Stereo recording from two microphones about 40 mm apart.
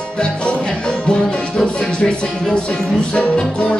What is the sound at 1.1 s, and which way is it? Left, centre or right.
Music, left.